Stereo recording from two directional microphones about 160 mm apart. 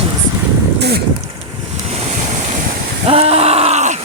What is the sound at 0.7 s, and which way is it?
Speech, 90° right.